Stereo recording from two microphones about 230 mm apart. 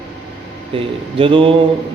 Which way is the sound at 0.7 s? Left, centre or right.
Right.